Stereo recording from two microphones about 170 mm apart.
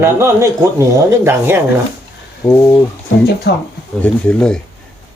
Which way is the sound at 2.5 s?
20° left (ahead or behind).